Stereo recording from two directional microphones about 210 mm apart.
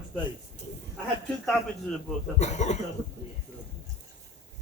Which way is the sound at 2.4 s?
35° left (ahead or behind).